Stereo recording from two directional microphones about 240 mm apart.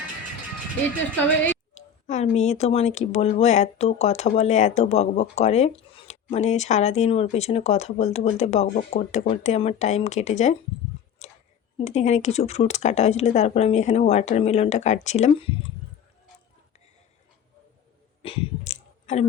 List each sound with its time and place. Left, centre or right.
1.7 s speech: left
11.9 s speech: left
18.2 s a sound: left